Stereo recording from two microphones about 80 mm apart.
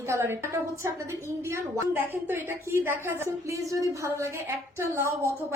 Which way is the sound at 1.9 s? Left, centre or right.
Right.